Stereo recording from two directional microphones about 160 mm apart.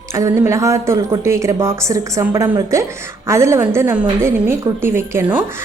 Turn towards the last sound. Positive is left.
turn(degrees=-15)  # may be behind; listen again after turning